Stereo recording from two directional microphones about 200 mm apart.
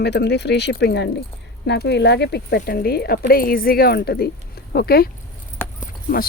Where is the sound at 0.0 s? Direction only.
55° left (ahead or behind).